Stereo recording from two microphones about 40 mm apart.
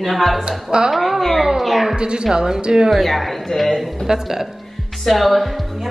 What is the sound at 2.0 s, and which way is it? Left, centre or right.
Speech, right.